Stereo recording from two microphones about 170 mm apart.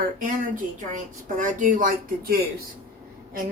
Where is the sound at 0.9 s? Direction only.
50° right (ahead or behind).